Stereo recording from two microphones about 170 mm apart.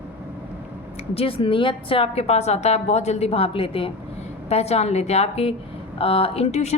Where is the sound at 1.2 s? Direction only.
30° left (ahead or behind).